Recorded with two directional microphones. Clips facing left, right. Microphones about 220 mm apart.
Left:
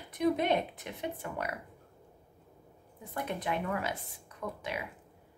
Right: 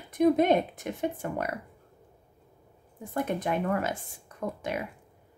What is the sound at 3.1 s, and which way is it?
A woman's voice, 45° right (ahead or behind).